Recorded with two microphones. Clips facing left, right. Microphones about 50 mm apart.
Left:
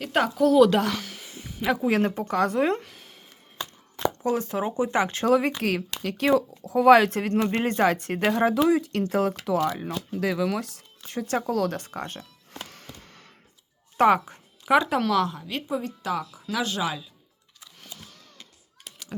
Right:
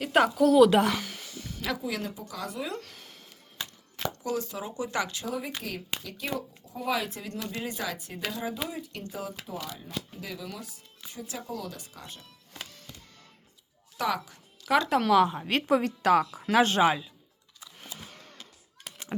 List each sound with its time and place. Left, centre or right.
0.0 s a woman's voice: centre
1.5 s a sound: left
1.8 s a woman's voice: left
2.8 s a sound: centre
4.2 s speech: left
5.2 s speech: left
7.3 s speech: left
12.6 s music: left
13.9 s speech: left
14.6 s a sound: centre
14.8 s a woman's voice: centre
15.4 s speech: right